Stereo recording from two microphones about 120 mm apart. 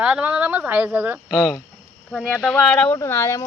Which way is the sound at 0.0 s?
10° right (ahead or behind).